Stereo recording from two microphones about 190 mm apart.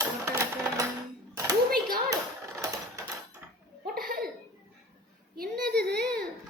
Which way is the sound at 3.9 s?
50° right (ahead or behind).